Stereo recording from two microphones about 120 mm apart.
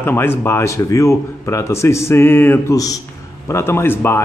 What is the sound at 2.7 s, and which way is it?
Speech, 30° left (ahead or behind).